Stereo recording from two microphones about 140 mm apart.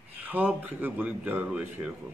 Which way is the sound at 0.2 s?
10° right (ahead or behind).